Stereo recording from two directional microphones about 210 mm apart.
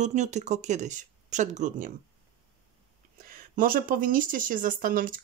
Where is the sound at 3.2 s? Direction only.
40° right (ahead or behind).